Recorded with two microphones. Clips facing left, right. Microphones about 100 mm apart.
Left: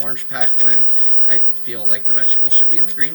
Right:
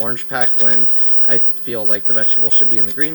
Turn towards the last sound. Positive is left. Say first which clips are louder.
# right 7 dB
turn(degrees=-50)  # may be behind; listen again after turning